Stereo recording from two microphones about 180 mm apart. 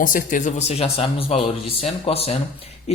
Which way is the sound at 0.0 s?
50° left (ahead or behind).